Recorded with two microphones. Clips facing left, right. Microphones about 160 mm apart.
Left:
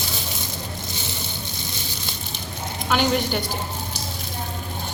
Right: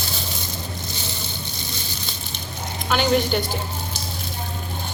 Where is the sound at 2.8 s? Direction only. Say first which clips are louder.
Right 2 dB; 10° left (ahead or behind).